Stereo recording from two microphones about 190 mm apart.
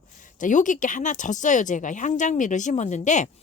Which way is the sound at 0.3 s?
40° left (ahead or behind).